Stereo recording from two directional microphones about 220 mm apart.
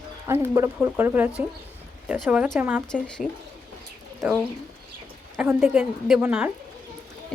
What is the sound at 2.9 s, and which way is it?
Speech, 5° left (ahead or behind).